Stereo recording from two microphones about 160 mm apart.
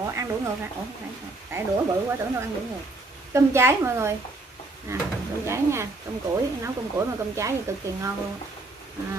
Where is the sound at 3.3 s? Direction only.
15° right (ahead or behind).